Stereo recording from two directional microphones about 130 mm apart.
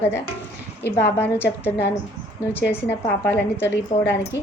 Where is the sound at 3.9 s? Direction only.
55° left (ahead or behind).